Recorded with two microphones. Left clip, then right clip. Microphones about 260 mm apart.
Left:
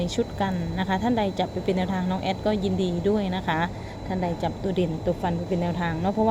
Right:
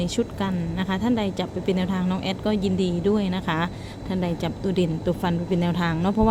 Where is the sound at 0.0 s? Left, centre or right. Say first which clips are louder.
Even; centre.